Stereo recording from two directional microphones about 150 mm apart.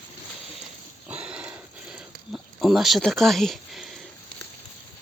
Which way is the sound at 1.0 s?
10° right (ahead or behind).